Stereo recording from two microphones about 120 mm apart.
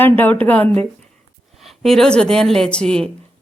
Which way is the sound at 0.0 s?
15° left (ahead or behind).